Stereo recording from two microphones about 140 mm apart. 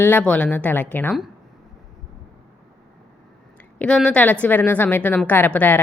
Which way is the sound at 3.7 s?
5° left (ahead or behind).